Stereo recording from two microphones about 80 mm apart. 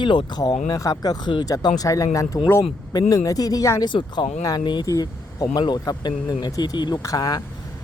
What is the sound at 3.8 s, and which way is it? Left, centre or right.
Speech, left.